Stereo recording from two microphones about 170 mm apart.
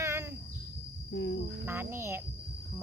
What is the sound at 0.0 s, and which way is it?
Cricket, 15° right (ahead or behind).